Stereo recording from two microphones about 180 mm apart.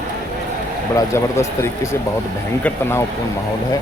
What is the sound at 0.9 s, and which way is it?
Speech, 15° left (ahead or behind).